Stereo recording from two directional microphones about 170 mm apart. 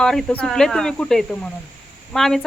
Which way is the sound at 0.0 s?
5° left (ahead or behind).